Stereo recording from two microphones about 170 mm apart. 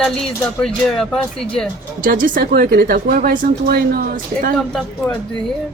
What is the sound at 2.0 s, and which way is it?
Speech, 55° right (ahead or behind).